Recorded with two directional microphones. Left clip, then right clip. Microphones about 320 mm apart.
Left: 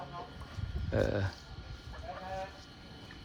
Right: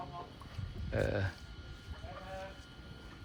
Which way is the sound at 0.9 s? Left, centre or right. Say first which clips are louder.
Left 3 dB; centre.